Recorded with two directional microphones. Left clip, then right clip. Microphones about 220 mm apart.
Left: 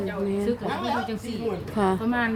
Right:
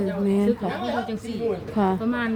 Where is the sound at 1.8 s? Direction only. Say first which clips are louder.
Left 2 dB; 5° right (ahead or behind).